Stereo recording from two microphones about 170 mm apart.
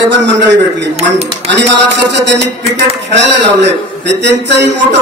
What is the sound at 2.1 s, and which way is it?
A man's voice, 90° right.